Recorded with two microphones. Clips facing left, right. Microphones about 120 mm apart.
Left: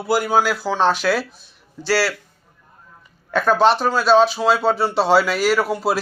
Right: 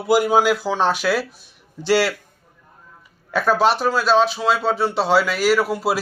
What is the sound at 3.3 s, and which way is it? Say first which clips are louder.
Speech: left 2 dB; 5° right (ahead or behind).